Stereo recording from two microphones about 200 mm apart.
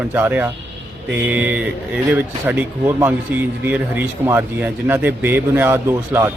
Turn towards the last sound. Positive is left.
turn(degrees=-15)  # may be behind; listen again after turning